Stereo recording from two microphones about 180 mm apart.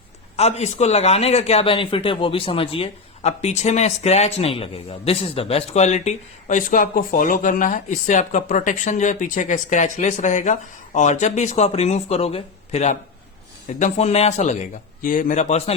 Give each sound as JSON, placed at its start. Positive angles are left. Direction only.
{"t": 0.3, "sound": "speech", "side_deg": 35}